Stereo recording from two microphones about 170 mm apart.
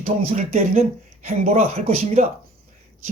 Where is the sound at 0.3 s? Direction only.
45° right (ahead or behind).